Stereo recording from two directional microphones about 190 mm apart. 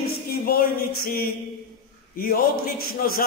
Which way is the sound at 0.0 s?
55° left (ahead or behind).